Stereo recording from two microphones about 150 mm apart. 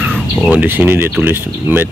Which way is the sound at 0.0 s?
5° left (ahead or behind).